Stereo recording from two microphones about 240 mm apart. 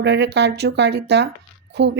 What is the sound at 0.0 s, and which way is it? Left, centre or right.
Speech, right.